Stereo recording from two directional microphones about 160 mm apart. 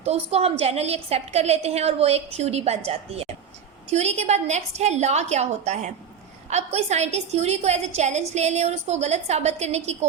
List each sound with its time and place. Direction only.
0.0 s a woman's voice: 40° right (ahead or behind)